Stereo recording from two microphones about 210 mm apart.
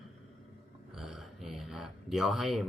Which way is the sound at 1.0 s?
Centre (ahead or behind).